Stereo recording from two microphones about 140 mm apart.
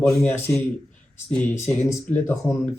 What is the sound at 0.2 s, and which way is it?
Speech, 15° left (ahead or behind).